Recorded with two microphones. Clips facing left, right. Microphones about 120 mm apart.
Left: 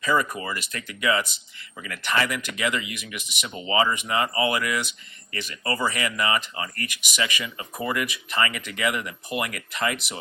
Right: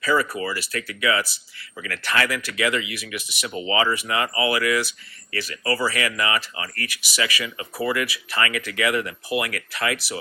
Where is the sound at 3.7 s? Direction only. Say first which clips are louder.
Even; 25° left (ahead or behind).